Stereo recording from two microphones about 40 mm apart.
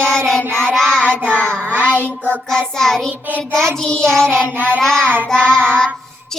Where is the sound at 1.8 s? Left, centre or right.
Left.